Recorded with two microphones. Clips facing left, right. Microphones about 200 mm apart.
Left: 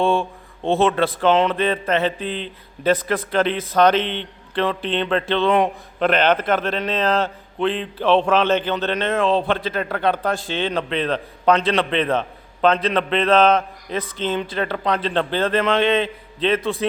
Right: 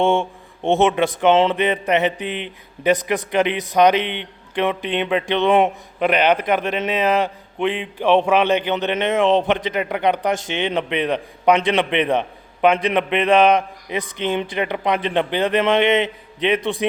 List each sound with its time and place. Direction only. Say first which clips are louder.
0.0 s a man's voice: right 1 dB; 20° right (ahead or behind)
6.0 s a man's voice: right 1 dB; 10° right (ahead or behind)